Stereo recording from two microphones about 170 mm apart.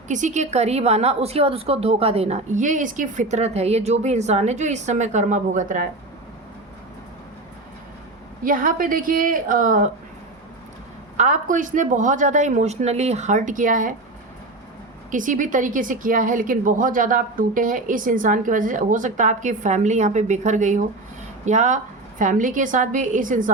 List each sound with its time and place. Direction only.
0.1 s a woman's voice: 45° right (ahead or behind)
8.4 s a woman's voice: 55° right (ahead or behind)
11.2 s a woman's voice: 45° right (ahead or behind)
15.1 s a woman's voice: 50° right (ahead or behind)